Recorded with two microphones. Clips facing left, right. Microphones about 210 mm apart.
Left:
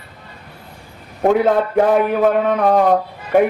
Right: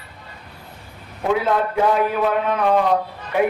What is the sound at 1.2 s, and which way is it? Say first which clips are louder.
Speech: left 5 dB; 45° left (ahead or behind).